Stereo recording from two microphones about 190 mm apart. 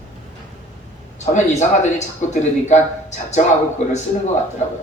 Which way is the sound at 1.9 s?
40° left (ahead or behind).